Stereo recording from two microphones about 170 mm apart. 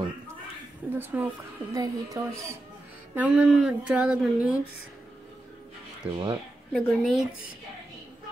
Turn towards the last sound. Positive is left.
turn(degrees=5)  # may be behind; listen again after turning